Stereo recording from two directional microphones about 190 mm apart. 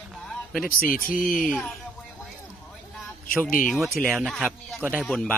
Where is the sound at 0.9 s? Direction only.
50° left (ahead or behind).